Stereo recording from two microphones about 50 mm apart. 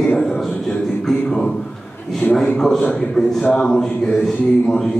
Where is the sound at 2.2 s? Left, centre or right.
Left.